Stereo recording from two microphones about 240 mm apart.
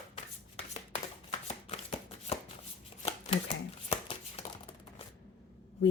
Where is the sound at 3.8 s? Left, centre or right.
Left.